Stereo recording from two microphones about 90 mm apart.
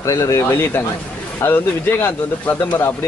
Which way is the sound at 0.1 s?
35° left (ahead or behind).